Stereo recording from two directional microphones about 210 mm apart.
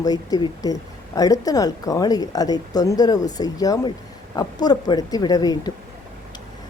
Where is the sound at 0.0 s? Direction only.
15° left (ahead or behind).